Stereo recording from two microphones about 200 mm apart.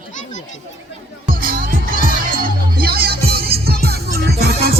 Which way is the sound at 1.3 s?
45° right (ahead or behind).